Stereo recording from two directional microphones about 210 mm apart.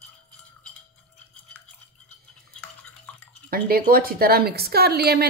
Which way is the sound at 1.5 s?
5° left (ahead or behind).